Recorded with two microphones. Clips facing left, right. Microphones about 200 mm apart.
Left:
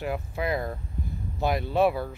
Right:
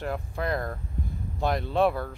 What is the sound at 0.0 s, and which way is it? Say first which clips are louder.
Speech: left 1 dB; 5° left (ahead or behind).